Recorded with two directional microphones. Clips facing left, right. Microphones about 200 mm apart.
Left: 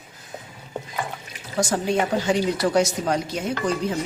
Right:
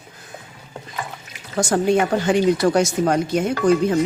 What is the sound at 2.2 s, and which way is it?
Speech, 50° right (ahead or behind).